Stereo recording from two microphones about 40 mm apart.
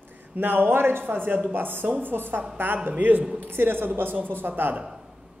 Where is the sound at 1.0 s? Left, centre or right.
Right.